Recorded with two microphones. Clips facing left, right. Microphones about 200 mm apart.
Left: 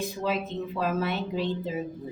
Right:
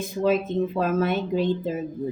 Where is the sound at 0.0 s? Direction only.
50° right (ahead or behind).